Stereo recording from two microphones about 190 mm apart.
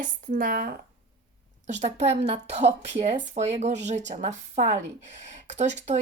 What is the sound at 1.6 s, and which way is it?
A woman's voice, 35° right (ahead or behind).